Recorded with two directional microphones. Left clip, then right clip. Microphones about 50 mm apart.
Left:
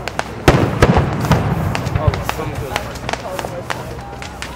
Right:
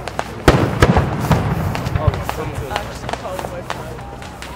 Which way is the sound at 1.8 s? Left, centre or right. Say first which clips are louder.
Left 1 dB; centre.